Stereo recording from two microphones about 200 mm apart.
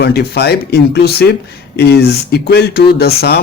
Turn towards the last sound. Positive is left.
turn(degrees=55)  # may be behind; listen again after turning